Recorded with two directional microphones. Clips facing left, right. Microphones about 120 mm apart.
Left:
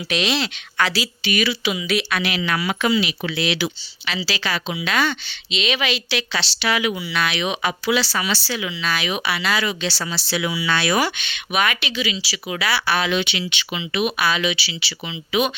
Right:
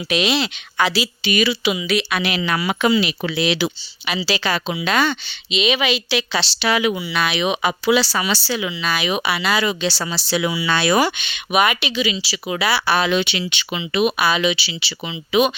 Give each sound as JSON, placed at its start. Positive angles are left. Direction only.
{"t": 0.1, "sound": "speech", "side_deg": -10}
{"t": 2.9, "sound": "speech", "side_deg": -45}
{"t": 3.3, "sound": "speech", "side_deg": -20}
{"t": 4.4, "sound": "speech", "side_deg": -50}
{"t": 4.9, "sound": "speech", "side_deg": -30}
{"t": 5.5, "sound": "speech", "side_deg": -5}
{"t": 6.6, "sound": "speech", "side_deg": -30}
{"t": 7.1, "sound": "speech", "side_deg": -15}
{"t": 8.2, "sound": "speech", "side_deg": -25}
{"t": 8.8, "sound": "speech", "side_deg": -15}
{"t": 11.2, "sound": "speech", "side_deg": -15}
{"t": 13.0, "sound": "speech", "side_deg": -35}
{"t": 14.2, "sound": "speech", "side_deg": -10}
{"t": 14.4, "sound": "speech", "side_deg": -20}